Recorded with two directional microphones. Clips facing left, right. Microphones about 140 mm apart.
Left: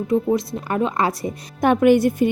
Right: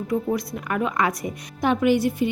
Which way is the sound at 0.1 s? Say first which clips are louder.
Left 5 dB; 25° left (ahead or behind).